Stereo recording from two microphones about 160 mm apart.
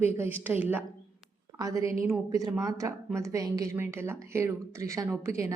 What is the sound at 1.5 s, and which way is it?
A woman's voice, 20° right (ahead or behind).